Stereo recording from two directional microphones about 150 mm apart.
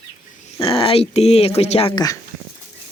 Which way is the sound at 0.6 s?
40° left (ahead or behind).